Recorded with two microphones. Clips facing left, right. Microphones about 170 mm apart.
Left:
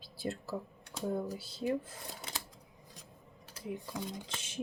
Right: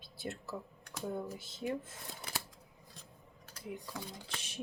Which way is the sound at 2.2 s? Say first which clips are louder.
Right 3 dB; 20° left (ahead or behind).